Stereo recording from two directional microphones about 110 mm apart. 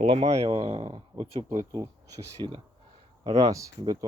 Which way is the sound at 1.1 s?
70° right (ahead or behind).